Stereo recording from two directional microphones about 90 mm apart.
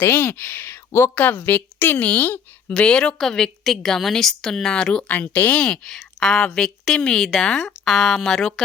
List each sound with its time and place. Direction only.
0.0 s a woman's voice: 25° left (ahead or behind); by 8.6 s 5° left (ahead or behind)